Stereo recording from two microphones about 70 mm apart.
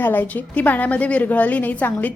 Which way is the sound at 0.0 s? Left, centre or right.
Left.